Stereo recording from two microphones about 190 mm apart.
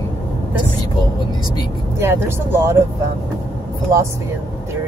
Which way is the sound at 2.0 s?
10° right (ahead or behind).